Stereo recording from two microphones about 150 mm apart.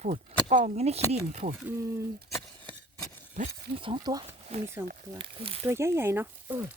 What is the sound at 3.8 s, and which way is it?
Speech, 30° right (ahead or behind).